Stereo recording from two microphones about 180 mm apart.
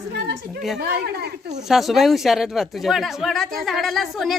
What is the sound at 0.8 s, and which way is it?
Speech, 60° right (ahead or behind).